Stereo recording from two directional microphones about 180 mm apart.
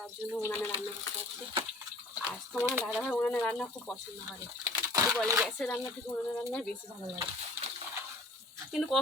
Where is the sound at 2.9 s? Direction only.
5° left (ahead or behind).